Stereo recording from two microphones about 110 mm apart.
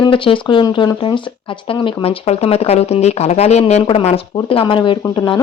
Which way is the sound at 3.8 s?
65° left (ahead or behind).